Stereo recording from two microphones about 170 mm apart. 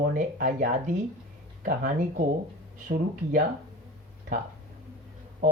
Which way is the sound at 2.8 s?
50° right (ahead or behind).